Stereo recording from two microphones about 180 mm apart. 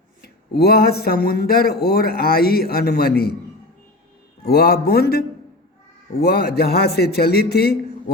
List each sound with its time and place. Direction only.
0.2 s speech: 60° left (ahead or behind)
4.4 s speech: 60° left (ahead or behind)